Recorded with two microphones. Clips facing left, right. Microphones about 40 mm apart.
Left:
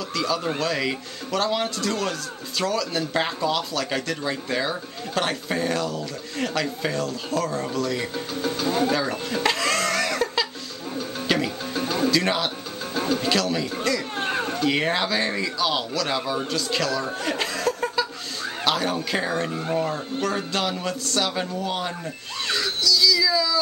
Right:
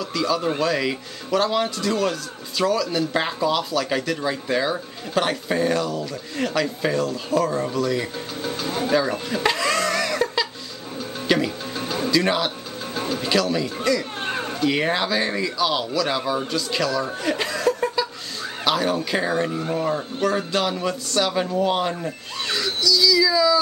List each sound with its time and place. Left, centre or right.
0.1 s speech: centre
11.0 s music: centre
12.9 s speech: centre
21.5 s speech: centre
21.8 s speech: centre
22.6 s baby cry: centre